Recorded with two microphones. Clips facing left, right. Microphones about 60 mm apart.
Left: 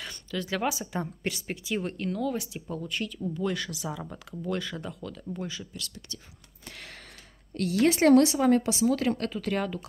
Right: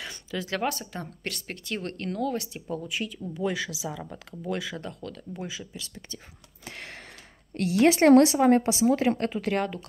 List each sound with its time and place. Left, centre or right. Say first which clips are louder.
0.0 s a sound: even; centre
0.7 s speech: left 4 dB; centre
5.3 s speech: left 2 dB; centre
5.7 s speech: right 1 dB; right
7.8 s speech: right 3 dB; right
8.2 s speech: right 3 dB; right
9.5 s speech: right 1 dB; centre